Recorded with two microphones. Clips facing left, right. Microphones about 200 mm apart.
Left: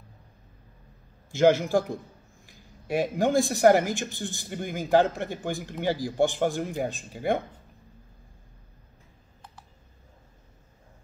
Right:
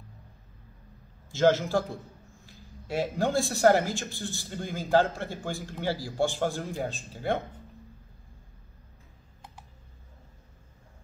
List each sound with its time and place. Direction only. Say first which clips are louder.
1.3 s speech: left 3 dB; 15° left (ahead or behind)